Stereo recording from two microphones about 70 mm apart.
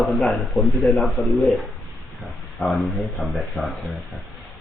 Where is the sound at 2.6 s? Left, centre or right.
Left.